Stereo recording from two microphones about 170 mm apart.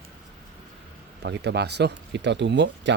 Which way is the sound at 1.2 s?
85° right.